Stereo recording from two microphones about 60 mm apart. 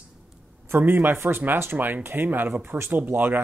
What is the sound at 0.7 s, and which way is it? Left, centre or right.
Speech, right.